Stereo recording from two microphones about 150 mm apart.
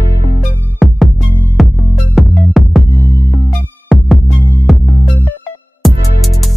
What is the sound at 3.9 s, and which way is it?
Music, centre (ahead or behind).